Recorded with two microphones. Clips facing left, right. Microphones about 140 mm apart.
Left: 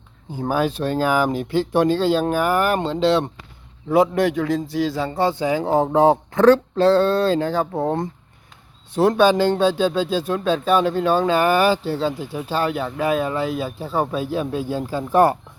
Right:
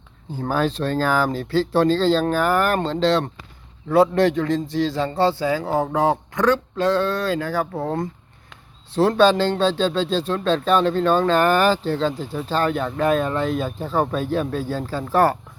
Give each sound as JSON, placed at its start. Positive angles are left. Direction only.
{"t": 0.3, "sound": "a man's voice", "side_deg": 15}